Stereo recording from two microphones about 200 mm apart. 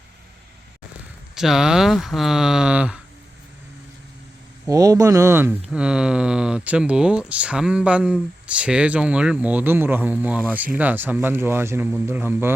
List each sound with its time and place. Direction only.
1.4 s speech: centre (ahead or behind)
4.7 s speech: 15° right (ahead or behind)